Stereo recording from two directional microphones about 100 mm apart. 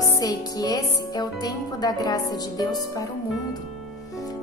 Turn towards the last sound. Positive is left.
turn(degrees=40)  # may be behind; listen again after turning